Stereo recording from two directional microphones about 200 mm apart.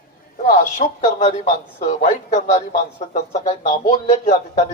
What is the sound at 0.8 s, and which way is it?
Speech, 40° left (ahead or behind).